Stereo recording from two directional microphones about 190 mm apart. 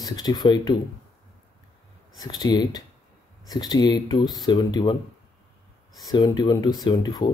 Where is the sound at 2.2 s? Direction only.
20° left (ahead or behind).